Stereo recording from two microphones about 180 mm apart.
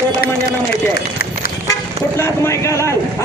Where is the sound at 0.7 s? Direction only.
55° left (ahead or behind).